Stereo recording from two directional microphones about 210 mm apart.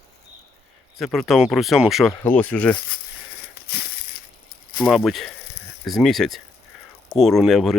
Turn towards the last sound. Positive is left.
turn(degrees=0)  # may be behind; listen again after turning